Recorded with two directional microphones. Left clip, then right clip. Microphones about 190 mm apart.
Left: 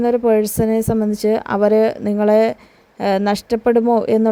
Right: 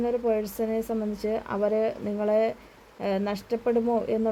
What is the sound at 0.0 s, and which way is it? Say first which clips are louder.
Speech: left 11 dB; 40° left (ahead or behind).